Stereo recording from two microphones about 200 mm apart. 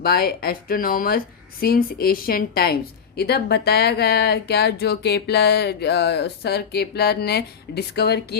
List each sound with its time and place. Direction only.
0.0 s speech: 50° left (ahead or behind)